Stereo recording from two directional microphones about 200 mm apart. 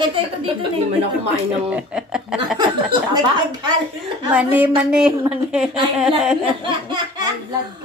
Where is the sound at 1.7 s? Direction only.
5° right (ahead or behind).